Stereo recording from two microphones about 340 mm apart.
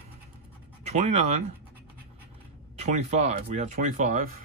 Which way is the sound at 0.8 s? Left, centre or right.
Centre.